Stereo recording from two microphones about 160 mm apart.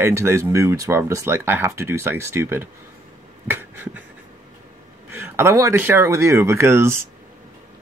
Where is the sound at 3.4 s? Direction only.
15° right (ahead or behind).